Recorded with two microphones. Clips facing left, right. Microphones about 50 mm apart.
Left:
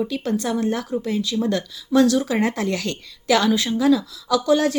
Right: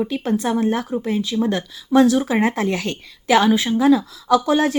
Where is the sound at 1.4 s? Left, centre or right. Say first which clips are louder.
Right 1 dB; centre.